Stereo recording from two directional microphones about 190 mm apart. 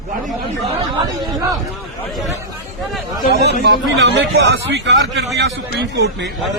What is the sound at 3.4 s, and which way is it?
Speech, 65° right (ahead or behind).